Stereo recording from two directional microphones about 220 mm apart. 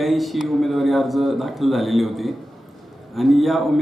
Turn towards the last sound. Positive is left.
turn(degrees=0)  # may be behind; listen again after turning